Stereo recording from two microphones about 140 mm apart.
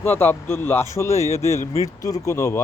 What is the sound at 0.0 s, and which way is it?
Speech, 15° left (ahead or behind).